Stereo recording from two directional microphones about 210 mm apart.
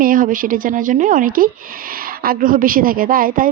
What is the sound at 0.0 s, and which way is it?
Speech, 40° right (ahead or behind).